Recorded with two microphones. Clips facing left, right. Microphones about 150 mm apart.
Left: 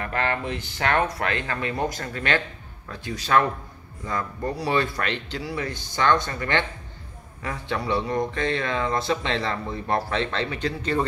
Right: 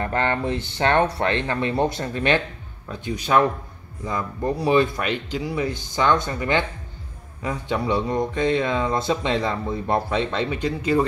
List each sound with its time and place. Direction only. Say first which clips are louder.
0.0 s speech: right 4 dB; 25° right (ahead or behind); by 11.1 s 10° right (ahead or behind)